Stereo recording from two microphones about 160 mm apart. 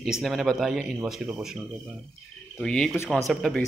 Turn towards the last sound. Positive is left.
turn(degrees=0)  # may be behind; listen again after turning